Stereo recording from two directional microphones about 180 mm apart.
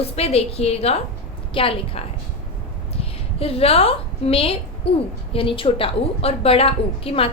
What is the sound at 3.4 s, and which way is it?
A woman's voice, 30° left (ahead or behind).